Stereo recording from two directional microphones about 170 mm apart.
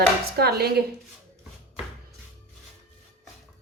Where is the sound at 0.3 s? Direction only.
65° right (ahead or behind).